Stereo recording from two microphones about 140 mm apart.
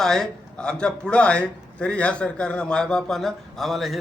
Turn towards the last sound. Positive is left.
turn(degrees=0)  # may be behind; listen again after turning